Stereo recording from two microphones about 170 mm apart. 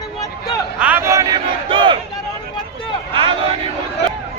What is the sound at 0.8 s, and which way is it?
Battle cry, 10° right (ahead or behind).